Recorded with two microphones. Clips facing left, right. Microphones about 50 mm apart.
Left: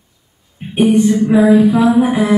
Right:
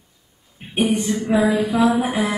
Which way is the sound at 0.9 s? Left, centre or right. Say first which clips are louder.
Left 13 dB; centre.